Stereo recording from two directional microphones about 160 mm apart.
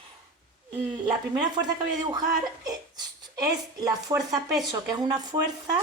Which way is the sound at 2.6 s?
25° right (ahead or behind).